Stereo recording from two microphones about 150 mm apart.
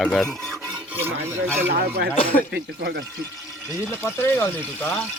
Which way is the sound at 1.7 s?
90° right.